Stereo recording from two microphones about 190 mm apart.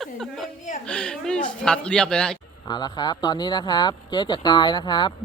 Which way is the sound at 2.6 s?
20° left (ahead or behind).